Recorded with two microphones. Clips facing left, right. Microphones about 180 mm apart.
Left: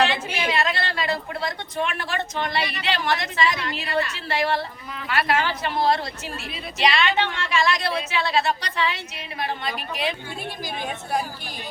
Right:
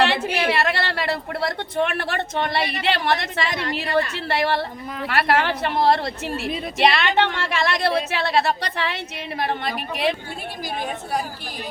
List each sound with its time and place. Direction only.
0.0 s a woman's voice: 65° right (ahead or behind)